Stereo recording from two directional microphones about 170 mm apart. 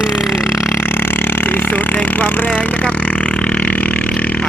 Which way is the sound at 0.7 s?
10° left (ahead or behind).